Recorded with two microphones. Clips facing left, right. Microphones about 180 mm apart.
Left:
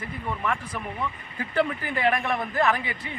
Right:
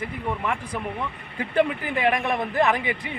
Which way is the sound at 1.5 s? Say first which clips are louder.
Right 3 dB; 15° right (ahead or behind).